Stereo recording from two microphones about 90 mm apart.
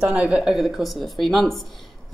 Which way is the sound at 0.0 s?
10° right (ahead or behind).